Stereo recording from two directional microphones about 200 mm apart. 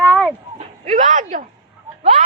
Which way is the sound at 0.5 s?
40° right (ahead or behind).